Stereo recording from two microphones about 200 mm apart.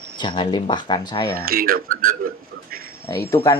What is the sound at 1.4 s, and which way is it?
Speech, 50° right (ahead or behind).